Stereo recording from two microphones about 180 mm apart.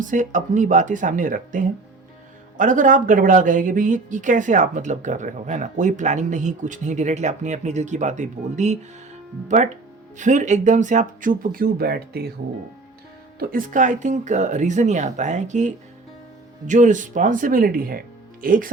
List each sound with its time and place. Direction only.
0.0 s speech: 45° right (ahead or behind)
10.2 s speech: 40° right (ahead or behind); by 12.3 s 60° right (ahead or behind)
13.4 s speech: 50° right (ahead or behind)